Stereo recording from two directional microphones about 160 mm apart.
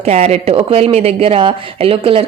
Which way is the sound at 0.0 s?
40° right (ahead or behind).